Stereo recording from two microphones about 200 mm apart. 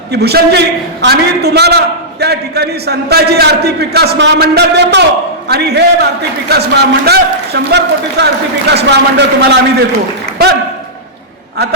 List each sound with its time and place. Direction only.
0.1 s a man's voice: 55° right (ahead or behind)